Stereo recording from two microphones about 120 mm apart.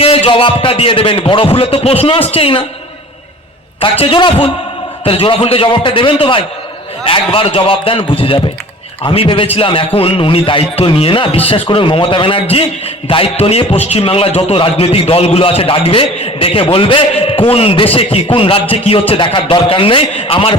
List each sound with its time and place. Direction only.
0.0 s a man's voice: 50° left (ahead or behind)
3.8 s a man's voice: 50° left (ahead or behind)